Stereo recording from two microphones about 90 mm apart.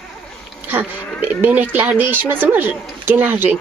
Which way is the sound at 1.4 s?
20° right (ahead or behind).